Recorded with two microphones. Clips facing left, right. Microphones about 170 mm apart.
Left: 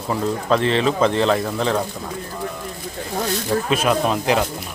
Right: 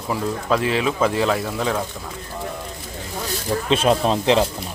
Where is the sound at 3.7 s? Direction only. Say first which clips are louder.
Right 3 dB; 30° right (ahead or behind).